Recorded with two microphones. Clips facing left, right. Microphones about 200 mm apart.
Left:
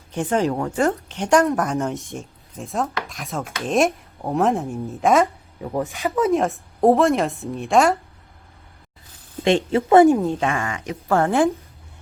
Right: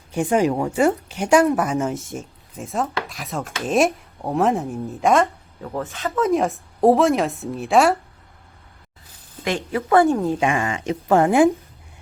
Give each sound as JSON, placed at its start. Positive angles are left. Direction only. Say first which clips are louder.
{"t": 0.1, "sound": "speech", "louder": "right 2 dB", "side_deg": -10}
{"t": 5.5, "sound": "speech", "louder": "left 3 dB", "side_deg": 15}
{"t": 6.3, "sound": "speech", "louder": "even", "side_deg": 0}
{"t": 9.4, "sound": "a woman's voice", "louder": "left 6 dB", "side_deg": 25}
{"t": 10.4, "sound": "speech", "louder": "right 3 dB", "side_deg": -20}